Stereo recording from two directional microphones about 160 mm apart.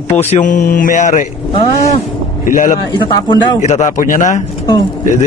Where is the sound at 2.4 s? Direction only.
60° left (ahead or behind).